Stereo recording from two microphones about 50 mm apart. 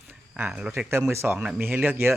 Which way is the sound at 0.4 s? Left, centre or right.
Centre.